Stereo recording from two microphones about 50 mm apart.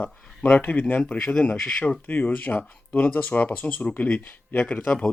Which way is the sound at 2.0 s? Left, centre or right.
Left.